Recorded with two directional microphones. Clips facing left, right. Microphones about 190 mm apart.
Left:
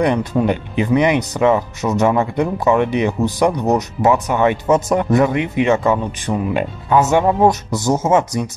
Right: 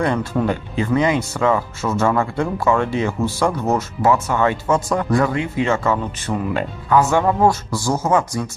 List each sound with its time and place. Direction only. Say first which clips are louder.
0.0 s speech: left 3 dB; 20° left (ahead or behind)